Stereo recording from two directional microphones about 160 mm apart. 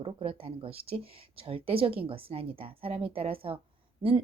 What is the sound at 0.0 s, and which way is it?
Speech, 35° right (ahead or behind).